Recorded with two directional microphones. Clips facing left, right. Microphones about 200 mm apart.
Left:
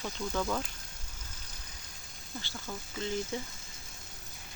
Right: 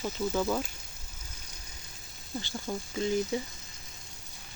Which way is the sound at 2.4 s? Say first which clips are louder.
Right 6 dB; 15° right (ahead or behind).